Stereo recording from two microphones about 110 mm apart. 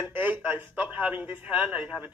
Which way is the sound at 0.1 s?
15° right (ahead or behind).